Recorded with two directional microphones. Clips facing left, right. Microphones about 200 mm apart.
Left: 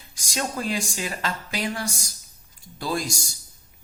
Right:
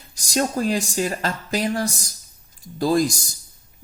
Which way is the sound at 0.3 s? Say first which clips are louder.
Right 6 dB; 40° right (ahead or behind).